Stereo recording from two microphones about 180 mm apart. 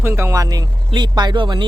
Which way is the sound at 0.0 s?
15° right (ahead or behind).